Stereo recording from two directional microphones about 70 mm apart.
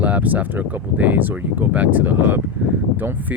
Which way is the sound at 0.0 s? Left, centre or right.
Right.